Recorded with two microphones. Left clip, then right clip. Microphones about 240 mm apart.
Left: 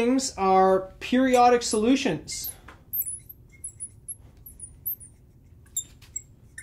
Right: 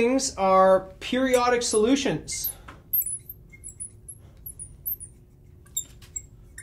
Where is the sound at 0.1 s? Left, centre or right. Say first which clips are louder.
Right 1 dB; left.